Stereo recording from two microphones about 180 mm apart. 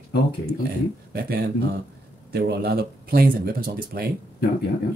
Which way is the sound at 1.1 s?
60° right (ahead or behind).